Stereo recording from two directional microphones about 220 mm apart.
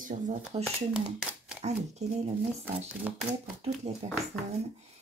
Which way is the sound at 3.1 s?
5° right (ahead or behind).